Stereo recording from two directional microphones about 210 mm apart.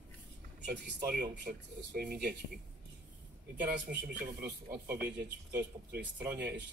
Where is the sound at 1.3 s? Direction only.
55° right (ahead or behind).